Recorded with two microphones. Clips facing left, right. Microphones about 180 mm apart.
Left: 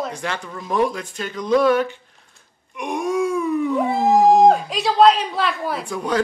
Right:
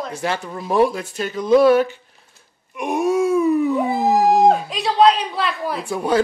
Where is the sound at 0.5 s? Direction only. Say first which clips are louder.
Right 4 dB; 30° right (ahead or behind).